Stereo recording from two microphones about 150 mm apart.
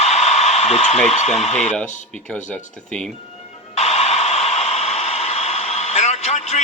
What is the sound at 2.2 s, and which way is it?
Speech, 5° left (ahead or behind).